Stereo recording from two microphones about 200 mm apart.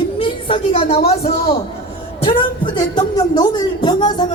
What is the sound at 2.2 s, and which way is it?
A woman's voice, 20° left (ahead or behind).